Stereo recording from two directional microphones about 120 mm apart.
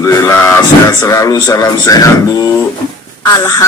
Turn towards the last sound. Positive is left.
turn(degrees=25)  # may be behind; listen again after turning